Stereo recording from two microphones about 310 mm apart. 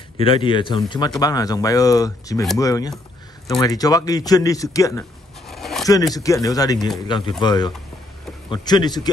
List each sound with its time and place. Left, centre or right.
0.2 s a man's voice: centre
5.5 s a sound: centre
5.9 s a man's voice: centre